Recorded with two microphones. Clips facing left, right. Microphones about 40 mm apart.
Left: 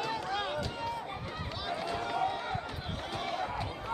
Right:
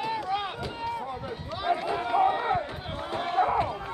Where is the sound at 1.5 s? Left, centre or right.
Right.